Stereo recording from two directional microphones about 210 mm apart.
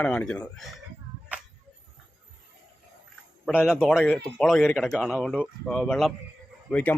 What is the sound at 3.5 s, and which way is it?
Speech, 5° right (ahead or behind).